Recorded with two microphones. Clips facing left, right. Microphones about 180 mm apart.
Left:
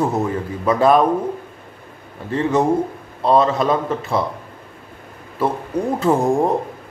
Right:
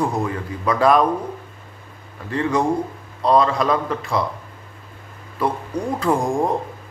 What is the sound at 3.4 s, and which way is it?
Speech, 25° left (ahead or behind).